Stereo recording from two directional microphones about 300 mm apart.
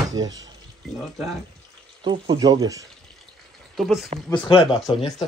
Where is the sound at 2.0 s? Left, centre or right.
Centre.